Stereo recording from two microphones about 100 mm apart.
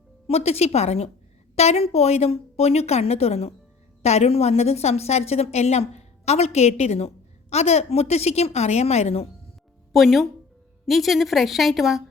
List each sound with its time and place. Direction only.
0.3 s a woman's voice: 90° left
9.9 s a woman's voice: centre (ahead or behind)